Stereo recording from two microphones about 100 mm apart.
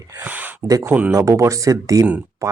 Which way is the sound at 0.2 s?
15° right (ahead or behind).